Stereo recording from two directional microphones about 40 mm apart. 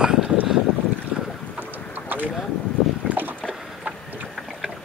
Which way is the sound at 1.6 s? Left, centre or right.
Right.